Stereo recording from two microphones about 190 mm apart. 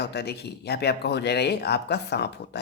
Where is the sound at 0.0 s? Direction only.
60° left (ahead or behind).